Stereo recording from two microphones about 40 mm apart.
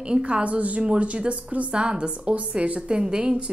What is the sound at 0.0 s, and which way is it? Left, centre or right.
A woman's voice, right.